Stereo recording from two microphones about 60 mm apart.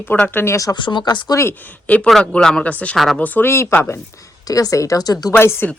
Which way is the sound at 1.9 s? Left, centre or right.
Left.